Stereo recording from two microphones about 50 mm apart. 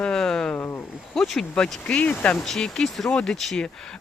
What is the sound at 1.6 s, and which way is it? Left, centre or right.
Speech, left.